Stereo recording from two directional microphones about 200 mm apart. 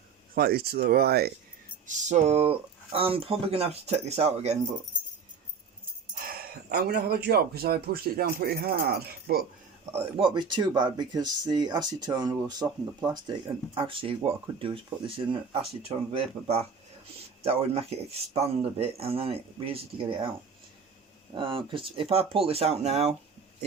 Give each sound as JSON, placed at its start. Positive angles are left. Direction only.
{"t": 0.3, "sound": "speech", "side_deg": -50}
{"t": 1.9, "sound": "speech", "side_deg": -35}
{"t": 6.2, "sound": "a sound", "side_deg": -50}
{"t": 7.3, "sound": "speech", "side_deg": -50}
{"t": 9.9, "sound": "speech", "side_deg": -25}
{"t": 21.3, "sound": "speech", "side_deg": -25}